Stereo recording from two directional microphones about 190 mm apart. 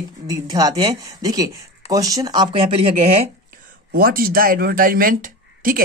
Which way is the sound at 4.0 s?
50° right (ahead or behind).